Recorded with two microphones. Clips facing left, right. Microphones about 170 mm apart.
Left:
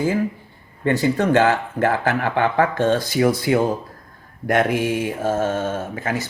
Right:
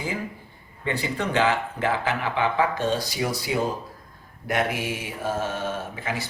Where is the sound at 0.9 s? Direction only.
45° left (ahead or behind).